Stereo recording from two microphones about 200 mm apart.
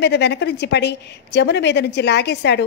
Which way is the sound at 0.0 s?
55° left (ahead or behind).